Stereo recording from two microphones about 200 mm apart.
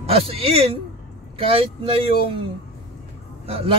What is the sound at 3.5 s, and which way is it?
Speech, 30° right (ahead or behind).